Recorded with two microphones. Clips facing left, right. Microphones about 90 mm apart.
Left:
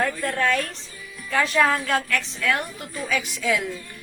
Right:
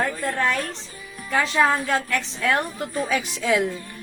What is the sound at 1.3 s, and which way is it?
A woman's voice, 25° right (ahead or behind).